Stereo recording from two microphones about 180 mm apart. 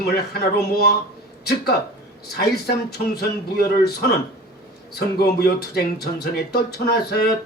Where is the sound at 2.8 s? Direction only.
60° left (ahead or behind).